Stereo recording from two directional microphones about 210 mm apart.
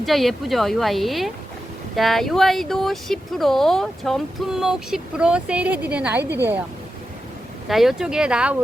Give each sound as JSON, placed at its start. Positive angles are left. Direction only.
{"t": 0.0, "sound": "speech", "side_deg": 0}
{"t": 7.7, "sound": "speech", "side_deg": 0}